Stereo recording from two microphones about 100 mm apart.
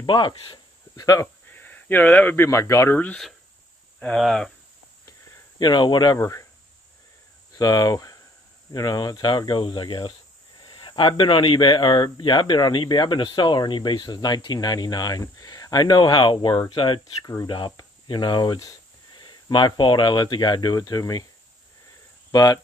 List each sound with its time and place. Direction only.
0.0 s speech: 50° left (ahead or behind); by 1.3 s 35° left (ahead or behind)
1.5 s speech: 15° left (ahead or behind)
4.0 s speech: 5° left (ahead or behind)
5.6 s speech: 50° left (ahead or behind)
6.1 s speech: 30° left (ahead or behind)
7.5 s speech: 40° left (ahead or behind)
19.1 s speech: 50° left (ahead or behind)
22.3 s speech: 40° left (ahead or behind)